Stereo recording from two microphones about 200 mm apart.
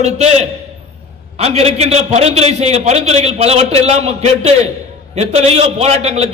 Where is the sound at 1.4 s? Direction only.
30° right (ahead or behind).